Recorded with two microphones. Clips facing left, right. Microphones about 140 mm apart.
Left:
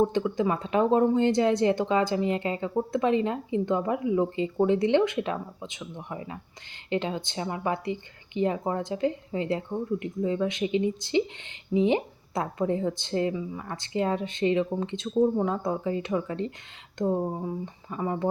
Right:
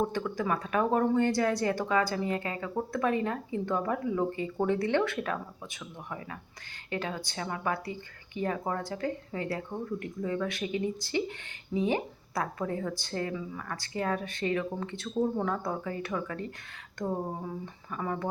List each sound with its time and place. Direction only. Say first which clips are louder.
0.1 s speech: left 5 dB; 20° left (ahead or behind)